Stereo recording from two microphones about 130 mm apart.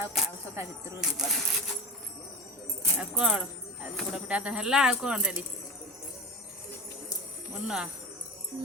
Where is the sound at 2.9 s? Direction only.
10° right (ahead or behind).